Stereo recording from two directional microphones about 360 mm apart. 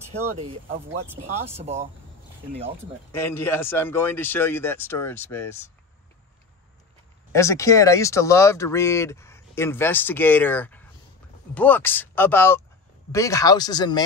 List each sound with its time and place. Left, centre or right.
0.1 s speech: right
1.6 s speech: centre
3.1 s speech: centre
7.3 s speech: centre